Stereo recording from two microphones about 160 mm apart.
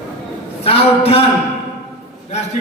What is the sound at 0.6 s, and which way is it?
Speech, 35° left (ahead or behind).